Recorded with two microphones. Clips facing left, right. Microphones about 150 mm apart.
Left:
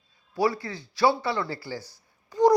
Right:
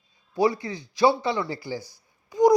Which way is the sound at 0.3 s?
20° right (ahead or behind).